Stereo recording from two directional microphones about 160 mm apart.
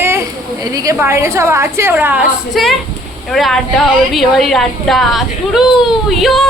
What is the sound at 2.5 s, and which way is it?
A woman's voice, centre (ahead or behind).